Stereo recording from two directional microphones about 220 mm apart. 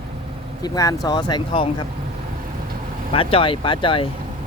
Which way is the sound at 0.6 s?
15° left (ahead or behind).